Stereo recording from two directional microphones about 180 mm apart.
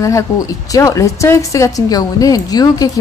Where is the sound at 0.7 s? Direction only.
20° left (ahead or behind).